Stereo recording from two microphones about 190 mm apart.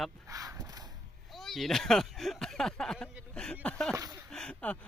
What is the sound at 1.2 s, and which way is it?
Speech, centre (ahead or behind).